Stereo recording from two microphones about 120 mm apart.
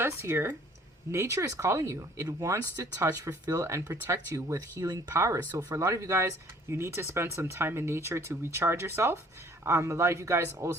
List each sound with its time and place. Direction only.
0.0 s speech: 20° right (ahead or behind)